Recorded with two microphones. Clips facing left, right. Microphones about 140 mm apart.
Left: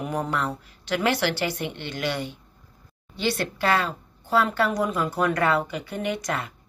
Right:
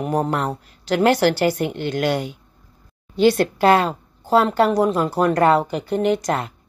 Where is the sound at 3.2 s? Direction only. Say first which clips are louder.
Right 10 dB; 45° right (ahead or behind).